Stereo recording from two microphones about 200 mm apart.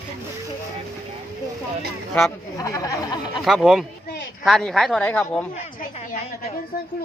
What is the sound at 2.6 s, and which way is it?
Speech, 15° left (ahead or behind).